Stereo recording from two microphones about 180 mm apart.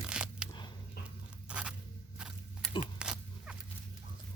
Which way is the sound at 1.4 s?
5° right (ahead or behind).